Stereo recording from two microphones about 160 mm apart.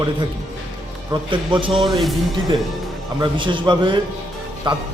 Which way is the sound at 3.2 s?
30° right (ahead or behind).